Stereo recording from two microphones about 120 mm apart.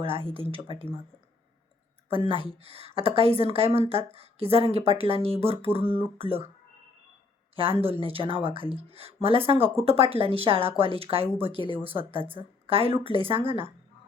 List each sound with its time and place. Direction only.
0.0 s speech: 50° right (ahead or behind)
2.0 s speech: 50° right (ahead or behind)
7.5 s speech: 50° right (ahead or behind)